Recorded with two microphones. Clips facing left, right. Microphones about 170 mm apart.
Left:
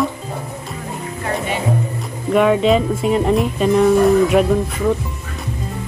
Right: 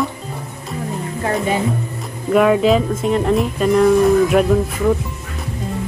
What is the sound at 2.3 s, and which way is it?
Speech, centre (ahead or behind).